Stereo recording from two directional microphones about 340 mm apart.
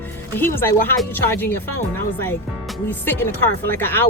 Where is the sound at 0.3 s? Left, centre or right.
Centre.